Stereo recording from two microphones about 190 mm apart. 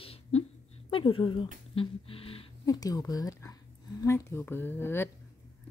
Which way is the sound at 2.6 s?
20° left (ahead or behind).